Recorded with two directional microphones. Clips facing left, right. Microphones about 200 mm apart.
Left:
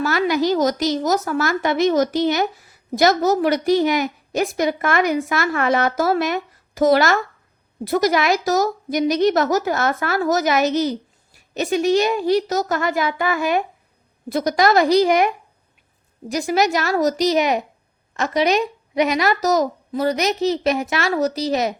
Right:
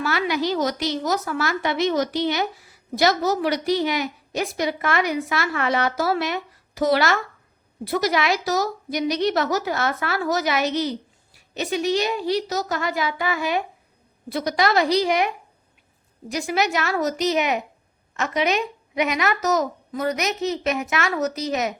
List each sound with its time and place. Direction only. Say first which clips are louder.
0.0 s a woman's voice: left 5 dB; 45° left (ahead or behind)
16.3 s a woman's voice: left 4 dB; 40° left (ahead or behind)